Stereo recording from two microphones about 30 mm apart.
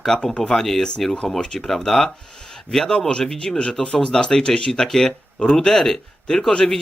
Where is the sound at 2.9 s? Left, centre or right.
Left.